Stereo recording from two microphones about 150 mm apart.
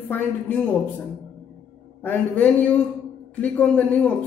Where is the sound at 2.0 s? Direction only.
10° left (ahead or behind).